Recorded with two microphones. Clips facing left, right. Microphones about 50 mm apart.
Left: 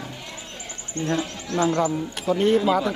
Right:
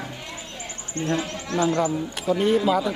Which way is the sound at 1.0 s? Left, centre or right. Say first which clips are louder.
Even; right.